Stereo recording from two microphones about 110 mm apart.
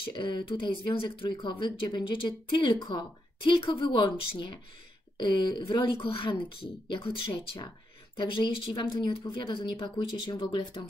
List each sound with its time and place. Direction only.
0.0 s speech: 45° left (ahead or behind)